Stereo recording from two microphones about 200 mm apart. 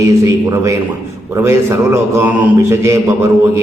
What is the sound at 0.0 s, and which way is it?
A man's voice, 15° right (ahead or behind).